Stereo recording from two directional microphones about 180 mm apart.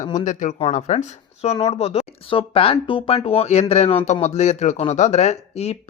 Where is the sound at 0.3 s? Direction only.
40° left (ahead or behind).